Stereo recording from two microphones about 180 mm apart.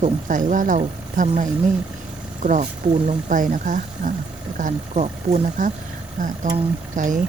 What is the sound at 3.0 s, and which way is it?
Speech, 45° right (ahead or behind).